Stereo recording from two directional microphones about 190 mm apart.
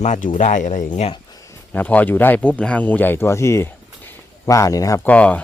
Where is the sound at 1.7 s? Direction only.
10° left (ahead or behind).